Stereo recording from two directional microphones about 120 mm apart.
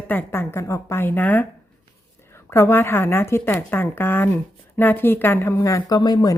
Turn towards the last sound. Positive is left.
turn(degrees=35)  # may be behind; listen again after turning